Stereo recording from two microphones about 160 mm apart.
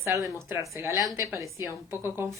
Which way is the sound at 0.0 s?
20° right (ahead or behind).